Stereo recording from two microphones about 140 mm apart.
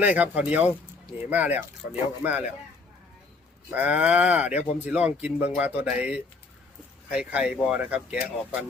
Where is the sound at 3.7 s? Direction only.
10° right (ahead or behind).